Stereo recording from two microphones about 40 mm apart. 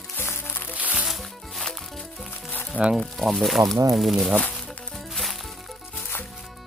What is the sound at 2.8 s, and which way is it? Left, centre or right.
Speech, right.